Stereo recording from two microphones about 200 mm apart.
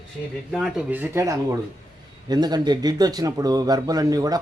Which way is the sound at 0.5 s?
5° right (ahead or behind).